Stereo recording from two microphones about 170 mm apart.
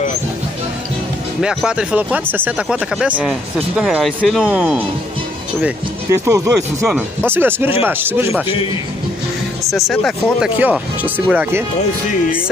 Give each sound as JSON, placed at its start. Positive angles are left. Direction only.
{"t": 1.4, "sound": "speech", "side_deg": -5}
{"t": 6.9, "sound": "speech", "side_deg": -10}
{"t": 9.7, "sound": "speech", "side_deg": 0}